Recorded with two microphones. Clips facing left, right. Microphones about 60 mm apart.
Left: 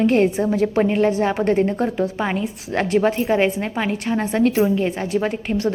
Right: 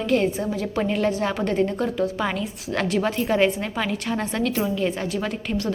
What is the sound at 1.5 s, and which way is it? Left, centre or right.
Speech, left.